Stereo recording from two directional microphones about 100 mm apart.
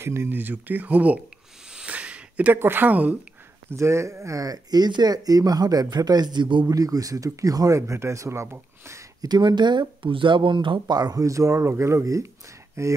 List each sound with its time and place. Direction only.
0.0 s speech: 25° right (ahead or behind)
1.7 s a sound: 10° right (ahead or behind)
3.7 s speech: 30° right (ahead or behind); by 6.7 s 50° right (ahead or behind)
6.7 s speech: 35° right (ahead or behind)
9.3 s speech: 45° right (ahead or behind); by 12.9 s 30° right (ahead or behind)